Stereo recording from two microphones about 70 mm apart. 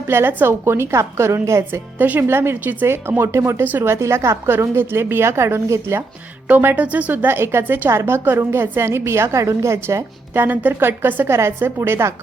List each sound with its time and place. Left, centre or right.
0.1 s a woman's voice: right
2.0 s a woman's voice: right
3.9 s a woman's voice: right
6.7 s speech: right
7.1 s a woman's voice: right